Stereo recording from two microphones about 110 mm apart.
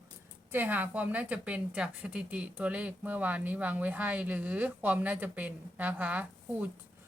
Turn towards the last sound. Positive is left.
turn(degrees=-15)  # may be behind; listen again after turning